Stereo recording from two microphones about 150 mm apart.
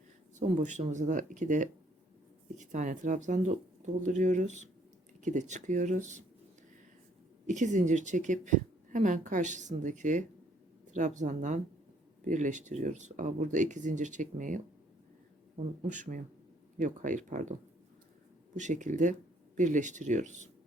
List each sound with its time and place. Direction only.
0.3 s a woman's voice: 55° right (ahead or behind)
7.4 s a woman's voice: 55° right (ahead or behind)